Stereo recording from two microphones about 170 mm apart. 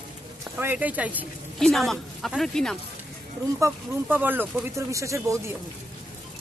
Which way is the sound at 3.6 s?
10° right (ahead or behind).